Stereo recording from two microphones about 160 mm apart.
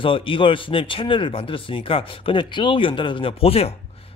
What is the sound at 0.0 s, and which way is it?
A man's voice, 35° left (ahead or behind).